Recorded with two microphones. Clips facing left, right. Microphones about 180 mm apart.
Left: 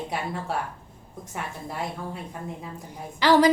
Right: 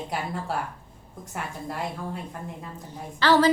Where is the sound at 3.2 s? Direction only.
15° left (ahead or behind).